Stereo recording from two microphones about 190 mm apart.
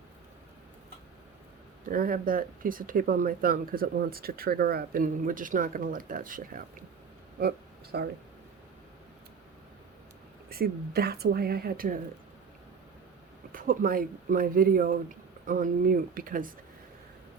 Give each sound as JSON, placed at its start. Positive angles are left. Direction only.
{"t": 1.9, "sound": "speech", "side_deg": -50}
{"t": 7.9, "sound": "speech", "side_deg": -60}
{"t": 10.5, "sound": "speech", "side_deg": -55}
{"t": 13.5, "sound": "speech", "side_deg": -45}